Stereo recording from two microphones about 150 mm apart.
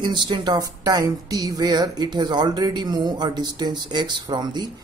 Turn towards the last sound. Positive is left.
turn(degrees=-30)  # may be behind; listen again after turning